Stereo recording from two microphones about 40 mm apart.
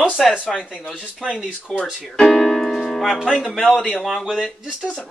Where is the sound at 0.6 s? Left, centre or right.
Left.